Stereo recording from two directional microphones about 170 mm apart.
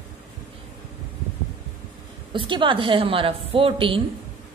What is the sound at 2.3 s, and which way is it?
A woman's voice, 30° right (ahead or behind).